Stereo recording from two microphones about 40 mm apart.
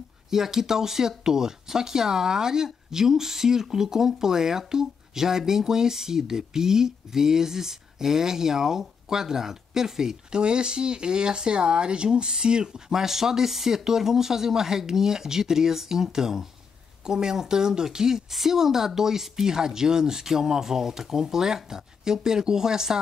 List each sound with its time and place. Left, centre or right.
0.3 s speech: centre